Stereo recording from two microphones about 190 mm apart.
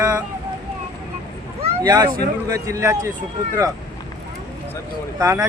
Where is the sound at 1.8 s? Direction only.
20° right (ahead or behind).